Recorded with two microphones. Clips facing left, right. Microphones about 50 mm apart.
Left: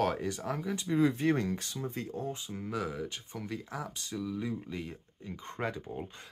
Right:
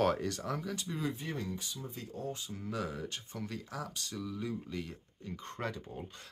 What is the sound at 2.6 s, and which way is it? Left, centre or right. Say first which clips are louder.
Speech: left 3 dB; centre.